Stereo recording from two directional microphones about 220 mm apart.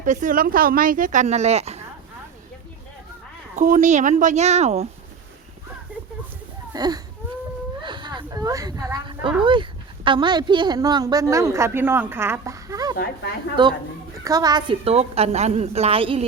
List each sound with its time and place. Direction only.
0.0 s speech: 35° right (ahead or behind)
3.5 s speech: 35° right (ahead or behind)
6.7 s baby cry: 15° right (ahead or behind)
7.8 s a sound: 20° right (ahead or behind)
9.4 s a woman's voice: 20° right (ahead or behind)